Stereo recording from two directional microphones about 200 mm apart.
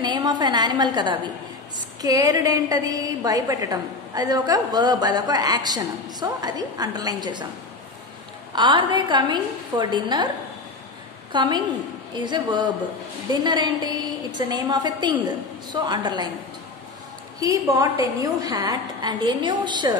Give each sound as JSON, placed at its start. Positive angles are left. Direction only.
{"t": 0.0, "sound": "a woman's voice", "side_deg": -20}
{"t": 8.5, "sound": "a woman's voice", "side_deg": -25}
{"t": 11.3, "sound": "a woman's voice", "side_deg": -20}
{"t": 17.4, "sound": "a woman's voice", "side_deg": -15}